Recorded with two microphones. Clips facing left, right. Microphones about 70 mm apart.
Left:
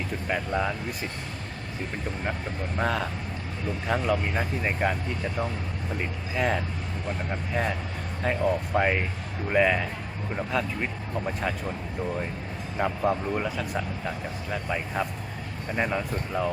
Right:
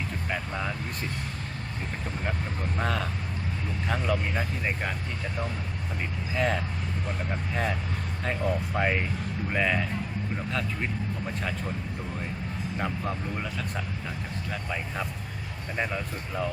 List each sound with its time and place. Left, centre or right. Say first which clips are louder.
0.3 s speech: left 6 dB; centre
2.7 s speech: left 3 dB; centre
6.3 s speech: left 1 dB; centre
13.0 s speech: left 7 dB; centre
14.5 s speech: left 5 dB; centre